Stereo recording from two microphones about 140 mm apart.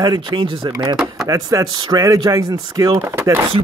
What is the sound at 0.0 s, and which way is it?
Speech, 30° right (ahead or behind).